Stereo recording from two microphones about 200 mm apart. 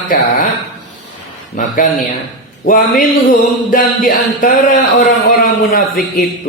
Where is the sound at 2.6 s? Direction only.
40° left (ahead or behind).